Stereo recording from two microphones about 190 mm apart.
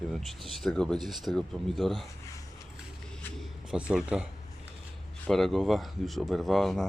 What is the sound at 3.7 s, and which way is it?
Speech, 5° right (ahead or behind).